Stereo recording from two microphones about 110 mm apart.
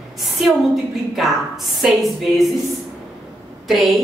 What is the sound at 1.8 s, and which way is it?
Speech, centre (ahead or behind).